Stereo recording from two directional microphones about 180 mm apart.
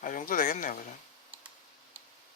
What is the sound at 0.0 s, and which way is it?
Speech, 50° left (ahead or behind).